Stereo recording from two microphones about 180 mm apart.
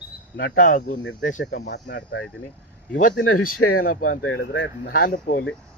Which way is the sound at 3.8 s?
55° left (ahead or behind).